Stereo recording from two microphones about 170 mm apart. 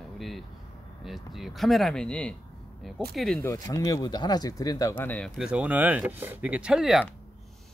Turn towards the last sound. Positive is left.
turn(degrees=0)  # may be behind; listen again after turning